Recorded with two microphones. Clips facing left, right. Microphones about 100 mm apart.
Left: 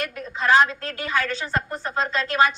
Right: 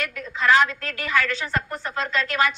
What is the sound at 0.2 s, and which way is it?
A woman's voice, 25° left (ahead or behind).